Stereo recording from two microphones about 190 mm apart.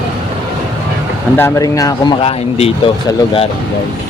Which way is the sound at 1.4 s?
15° left (ahead or behind).